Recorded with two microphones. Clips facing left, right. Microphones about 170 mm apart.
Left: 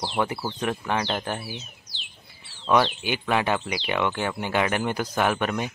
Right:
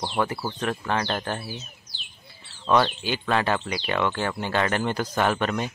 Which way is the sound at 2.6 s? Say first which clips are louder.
Even; 15° left (ahead or behind).